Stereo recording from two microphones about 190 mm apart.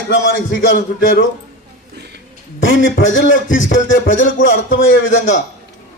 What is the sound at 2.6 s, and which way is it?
A man's voice, 85° left.